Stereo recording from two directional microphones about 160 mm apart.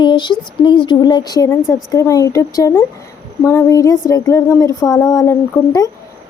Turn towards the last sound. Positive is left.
turn(degrees=20)  # may be behind; listen again after turning